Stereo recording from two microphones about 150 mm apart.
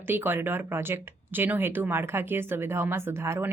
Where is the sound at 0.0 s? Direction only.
15° right (ahead or behind).